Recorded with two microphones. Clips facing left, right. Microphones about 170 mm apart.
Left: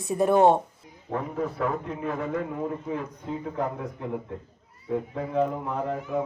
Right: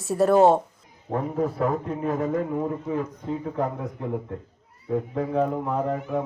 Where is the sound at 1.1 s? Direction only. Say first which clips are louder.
Right 4 dB; 40° right (ahead or behind).